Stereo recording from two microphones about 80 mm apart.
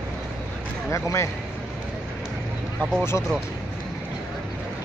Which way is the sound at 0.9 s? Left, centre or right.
Left.